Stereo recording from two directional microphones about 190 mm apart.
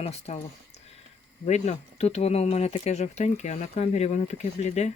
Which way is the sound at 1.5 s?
35° left (ahead or behind).